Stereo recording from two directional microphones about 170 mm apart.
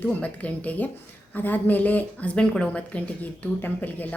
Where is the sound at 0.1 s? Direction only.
10° left (ahead or behind).